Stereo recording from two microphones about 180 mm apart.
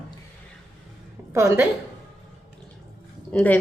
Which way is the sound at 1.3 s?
15° right (ahead or behind).